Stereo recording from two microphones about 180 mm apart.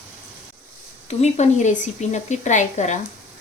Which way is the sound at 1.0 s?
40° left (ahead or behind).